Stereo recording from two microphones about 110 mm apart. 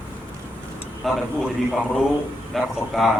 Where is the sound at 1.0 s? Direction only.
Centre (ahead or behind).